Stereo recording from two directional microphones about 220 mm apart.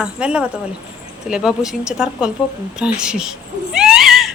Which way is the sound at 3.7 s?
5° right (ahead or behind).